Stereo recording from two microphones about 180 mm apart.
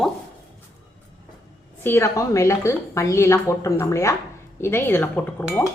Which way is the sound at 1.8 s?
15° left (ahead or behind).